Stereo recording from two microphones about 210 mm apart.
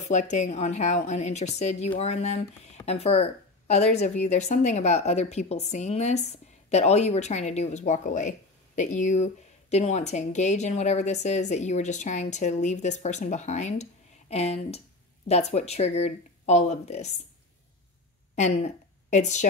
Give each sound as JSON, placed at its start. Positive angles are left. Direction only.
{"t": 0.0, "sound": "a woman's voice", "side_deg": 35}
{"t": 18.3, "sound": "a woman's voice", "side_deg": 35}